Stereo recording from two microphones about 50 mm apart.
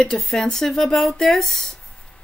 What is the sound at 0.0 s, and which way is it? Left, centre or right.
Speech, centre.